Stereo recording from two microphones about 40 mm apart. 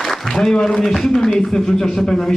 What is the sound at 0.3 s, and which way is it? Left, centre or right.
A man's voice, centre.